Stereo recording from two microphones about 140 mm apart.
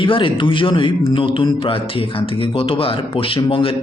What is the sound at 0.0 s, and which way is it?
Speech, 35° left (ahead or behind).